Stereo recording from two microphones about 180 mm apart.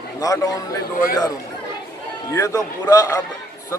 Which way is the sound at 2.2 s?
20° left (ahead or behind).